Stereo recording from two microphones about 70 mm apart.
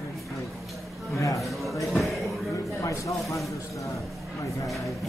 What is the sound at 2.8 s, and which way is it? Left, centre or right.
Speech, left.